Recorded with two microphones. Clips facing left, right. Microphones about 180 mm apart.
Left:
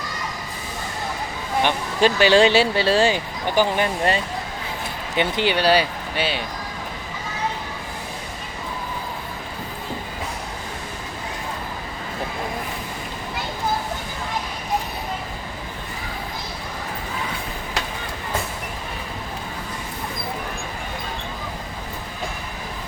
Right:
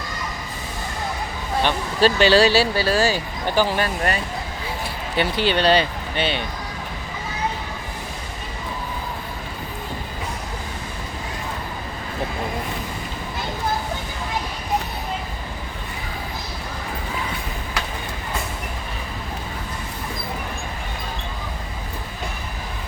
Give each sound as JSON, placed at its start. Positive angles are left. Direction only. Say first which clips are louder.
{"t": 1.6, "sound": "speech", "louder": "right 1 dB", "side_deg": 15}